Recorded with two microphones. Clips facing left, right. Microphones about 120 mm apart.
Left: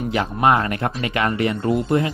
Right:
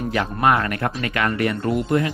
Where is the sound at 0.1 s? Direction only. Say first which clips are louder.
Left 1 dB; 20° left (ahead or behind).